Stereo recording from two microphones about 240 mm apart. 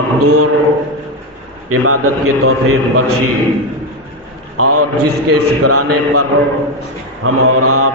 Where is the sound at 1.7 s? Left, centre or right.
Right.